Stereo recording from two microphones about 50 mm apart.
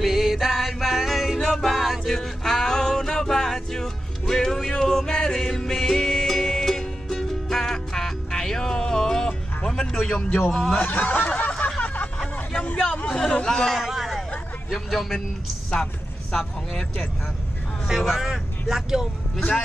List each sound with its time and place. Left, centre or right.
0.0 s music: centre
2.1 s music: centre
10.1 s a man's voice: left
11.8 s a sound: left
12.6 s hubbub: left
13.5 s a man's voice: centre
13.7 s a sound: centre
14.7 s speech: centre
15.7 s a sound: centre
17.8 s speech: centre